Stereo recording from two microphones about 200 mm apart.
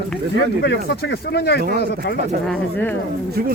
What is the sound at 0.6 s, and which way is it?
Speech, 60° left (ahead or behind).